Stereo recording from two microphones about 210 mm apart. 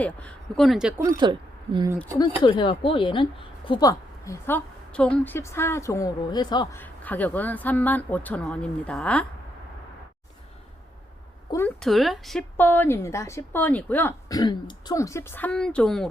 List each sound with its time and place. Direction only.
0.0 s speech: 5° left (ahead or behind)
1.0 s speech: 20° right (ahead or behind)
2.1 s speech: 20° left (ahead or behind)
6.7 s speech: 10° left (ahead or behind)
11.5 s speech: 5° left (ahead or behind)